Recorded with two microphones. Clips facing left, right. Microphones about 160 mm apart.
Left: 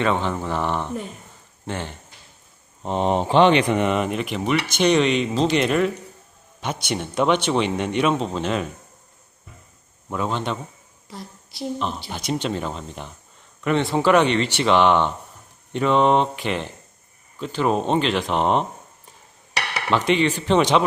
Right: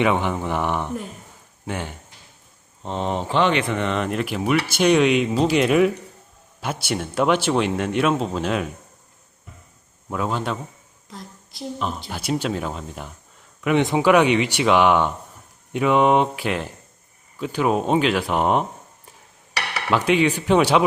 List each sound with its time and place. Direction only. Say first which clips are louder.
0.0 s speech: right 2 dB; 15° right (ahead or behind)
2.8 s speech: left 4 dB; 15° left (ahead or behind); by 8.7 s 5° right (ahead or behind)
10.1 s a woman's voice: even; 5° right (ahead or behind)
19.9 s speech: right 1 dB; 10° right (ahead or behind)